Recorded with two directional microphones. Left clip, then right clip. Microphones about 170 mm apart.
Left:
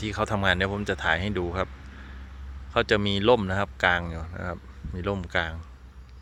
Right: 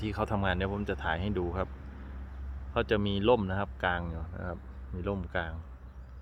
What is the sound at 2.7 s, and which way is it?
Speech, 20° left (ahead or behind).